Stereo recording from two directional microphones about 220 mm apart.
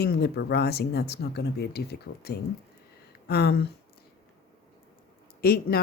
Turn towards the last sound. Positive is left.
turn(degrees=45)  # may be behind; listen again after turning